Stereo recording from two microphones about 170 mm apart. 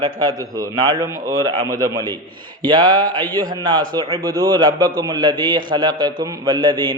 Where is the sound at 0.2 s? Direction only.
20° right (ahead or behind).